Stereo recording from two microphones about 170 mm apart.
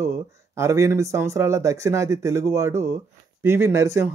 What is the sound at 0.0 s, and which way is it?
Speech, 15° right (ahead or behind).